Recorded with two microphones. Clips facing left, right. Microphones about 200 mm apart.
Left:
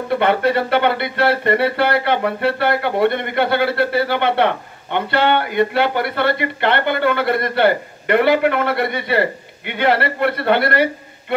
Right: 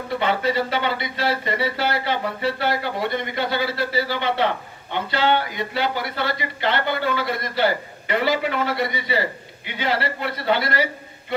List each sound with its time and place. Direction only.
0.1 s speech: 60° left (ahead or behind)